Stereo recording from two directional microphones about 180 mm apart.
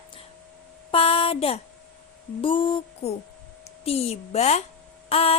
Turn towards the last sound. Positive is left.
turn(degrees=30)  # may be behind; listen again after turning